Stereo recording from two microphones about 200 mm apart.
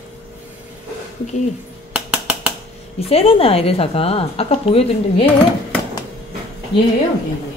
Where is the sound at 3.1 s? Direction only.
30° left (ahead or behind).